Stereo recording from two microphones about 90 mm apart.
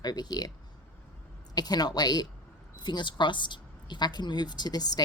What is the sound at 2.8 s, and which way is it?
A woman's voice, 60° left (ahead or behind).